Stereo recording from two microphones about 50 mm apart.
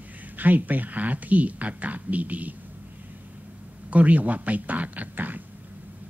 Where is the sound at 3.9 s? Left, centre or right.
Right.